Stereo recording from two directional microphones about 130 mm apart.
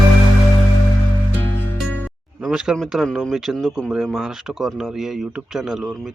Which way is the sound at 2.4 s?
5° right (ahead or behind).